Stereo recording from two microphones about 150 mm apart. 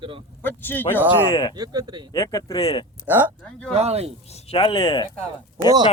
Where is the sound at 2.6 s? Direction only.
40° left (ahead or behind).